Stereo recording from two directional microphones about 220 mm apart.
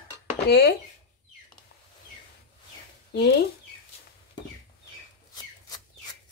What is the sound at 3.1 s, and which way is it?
Speech, 45° left (ahead or behind).